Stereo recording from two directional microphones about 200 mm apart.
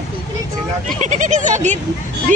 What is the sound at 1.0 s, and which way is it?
Speech, 40° right (ahead or behind).